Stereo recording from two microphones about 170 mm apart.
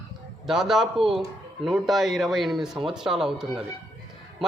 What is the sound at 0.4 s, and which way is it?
Speech, centre (ahead or behind).